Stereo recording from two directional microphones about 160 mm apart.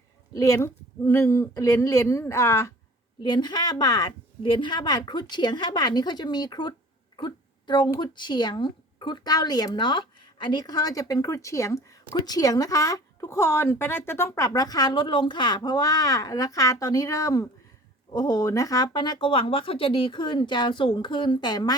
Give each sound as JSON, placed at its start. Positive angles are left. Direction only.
{"t": 0.3, "sound": "a woman's voice", "side_deg": 20}
{"t": 3.2, "sound": "speech", "side_deg": 25}